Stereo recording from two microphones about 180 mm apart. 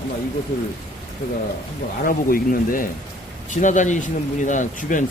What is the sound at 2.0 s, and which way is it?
A man's voice, 50° left (ahead or behind).